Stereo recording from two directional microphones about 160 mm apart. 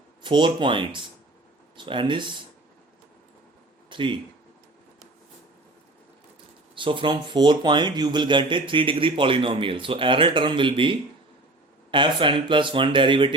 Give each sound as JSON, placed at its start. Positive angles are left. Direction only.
{"t": 0.2, "sound": "speech", "side_deg": -30}
{"t": 3.8, "sound": "speech", "side_deg": -30}
{"t": 6.7, "sound": "speech", "side_deg": -30}